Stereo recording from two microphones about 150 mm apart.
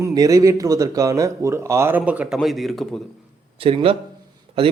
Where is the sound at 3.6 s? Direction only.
40° right (ahead or behind).